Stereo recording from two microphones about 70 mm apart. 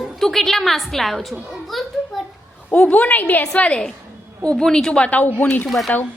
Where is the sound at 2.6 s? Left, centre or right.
Centre.